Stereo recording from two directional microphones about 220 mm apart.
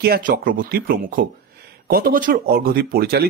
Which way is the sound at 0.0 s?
45° right (ahead or behind).